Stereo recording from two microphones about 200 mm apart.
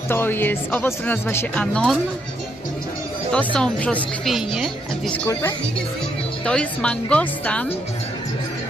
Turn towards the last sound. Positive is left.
turn(degrees=5)  # may be behind; listen again after turning